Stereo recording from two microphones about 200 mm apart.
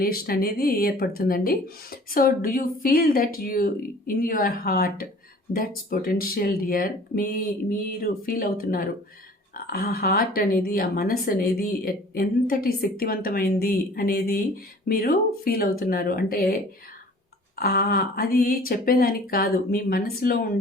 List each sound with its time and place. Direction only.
0.0 s a woman's voice: 50° left (ahead or behind)
17.6 s a woman's voice: 45° left (ahead or behind)